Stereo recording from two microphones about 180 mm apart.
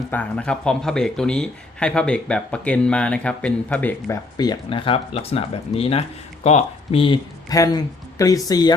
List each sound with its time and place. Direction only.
0.1 s speech: 5° left (ahead or behind)
4.0 s speech: 20° left (ahead or behind)